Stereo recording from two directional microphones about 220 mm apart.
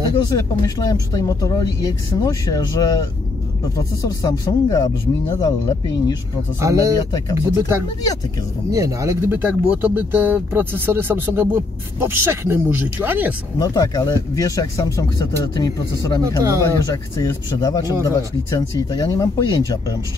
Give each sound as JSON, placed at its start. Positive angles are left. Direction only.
{"t": 0.6, "sound": "speech", "side_deg": 15}
{"t": 6.6, "sound": "speech", "side_deg": -15}
{"t": 7.0, "sound": "speech", "side_deg": 15}
{"t": 8.7, "sound": "speech", "side_deg": -15}
{"t": 13.6, "sound": "speech", "side_deg": 15}
{"t": 16.3, "sound": "speech", "side_deg": -15}
{"t": 16.6, "sound": "speech", "side_deg": 15}